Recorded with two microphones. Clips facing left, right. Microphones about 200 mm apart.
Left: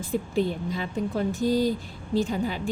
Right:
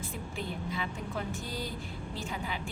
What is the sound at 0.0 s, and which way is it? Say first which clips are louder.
A woman's voice: left 13 dB; 35° left (ahead or behind).